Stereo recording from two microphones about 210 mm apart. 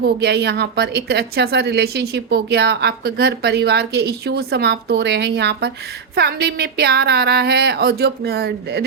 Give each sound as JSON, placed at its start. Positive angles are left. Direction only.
{"t": 0.0, "sound": "a woman's voice", "side_deg": -50}